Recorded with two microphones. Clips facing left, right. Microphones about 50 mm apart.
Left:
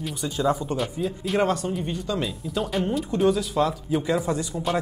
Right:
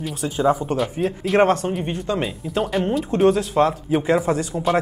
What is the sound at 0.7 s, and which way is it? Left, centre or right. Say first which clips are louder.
A man's voice: right 5 dB; right.